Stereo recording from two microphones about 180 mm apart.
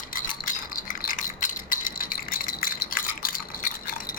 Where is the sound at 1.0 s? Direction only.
50° left (ahead or behind).